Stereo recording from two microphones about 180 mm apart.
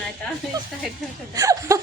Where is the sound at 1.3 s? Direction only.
20° right (ahead or behind).